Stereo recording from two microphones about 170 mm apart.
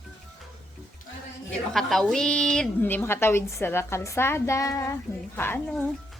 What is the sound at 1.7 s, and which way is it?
A woman's voice, centre (ahead or behind).